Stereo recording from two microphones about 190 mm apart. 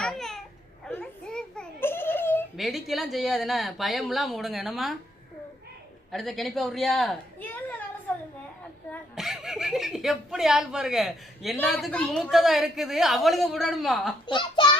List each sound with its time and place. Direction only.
0.0 s babbling: centre (ahead or behind)
0.9 s a sound: 5° left (ahead or behind)
2.6 s a woman's voice: centre (ahead or behind)
6.1 s a woman's voice: centre (ahead or behind)
9.1 s a woman's voice: centre (ahead or behind)
14.3 s a child's voice: 25° left (ahead or behind)